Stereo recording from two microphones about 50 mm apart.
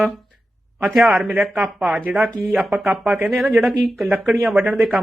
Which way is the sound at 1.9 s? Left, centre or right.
Right.